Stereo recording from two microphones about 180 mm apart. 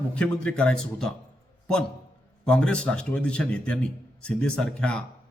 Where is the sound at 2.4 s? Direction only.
5° left (ahead or behind).